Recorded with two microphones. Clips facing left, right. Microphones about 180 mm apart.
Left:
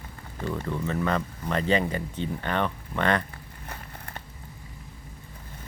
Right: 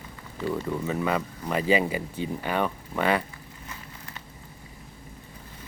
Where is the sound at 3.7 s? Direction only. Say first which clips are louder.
Left 3 dB; 55° left (ahead or behind).